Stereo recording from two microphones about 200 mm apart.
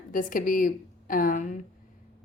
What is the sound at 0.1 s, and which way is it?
Speech, 40° left (ahead or behind).